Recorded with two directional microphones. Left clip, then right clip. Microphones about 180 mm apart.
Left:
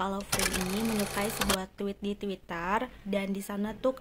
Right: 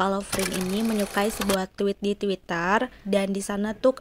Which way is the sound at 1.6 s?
35° right (ahead or behind).